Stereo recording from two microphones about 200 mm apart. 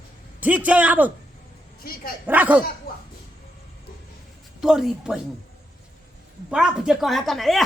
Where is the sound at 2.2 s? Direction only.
10° right (ahead or behind).